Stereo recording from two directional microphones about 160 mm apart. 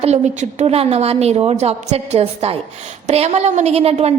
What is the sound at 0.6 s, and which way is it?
A woman's voice, 40° right (ahead or behind).